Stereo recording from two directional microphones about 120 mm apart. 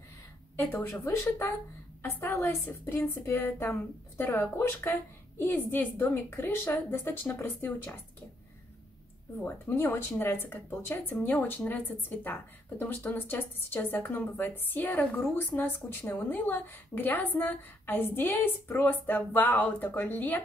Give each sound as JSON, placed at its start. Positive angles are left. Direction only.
{"t": 0.6, "sound": "a woman's voice", "side_deg": 15}
{"t": 9.4, "sound": "a woman's voice", "side_deg": 15}